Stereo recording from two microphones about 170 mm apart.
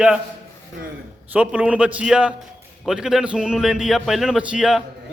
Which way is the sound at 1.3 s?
5° right (ahead or behind).